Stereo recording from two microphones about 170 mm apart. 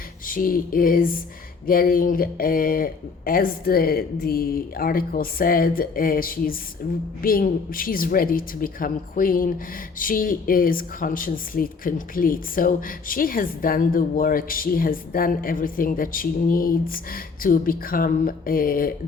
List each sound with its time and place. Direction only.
0.3 s speech: 55° left (ahead or behind)